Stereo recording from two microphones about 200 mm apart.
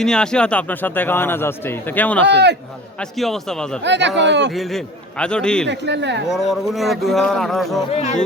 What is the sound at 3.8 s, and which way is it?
Speech, 60° right (ahead or behind).